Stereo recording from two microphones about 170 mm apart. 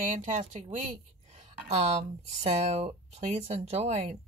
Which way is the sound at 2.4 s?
35° right (ahead or behind).